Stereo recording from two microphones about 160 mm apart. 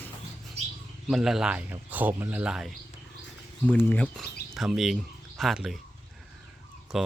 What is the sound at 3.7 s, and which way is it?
Speech, 10° left (ahead or behind).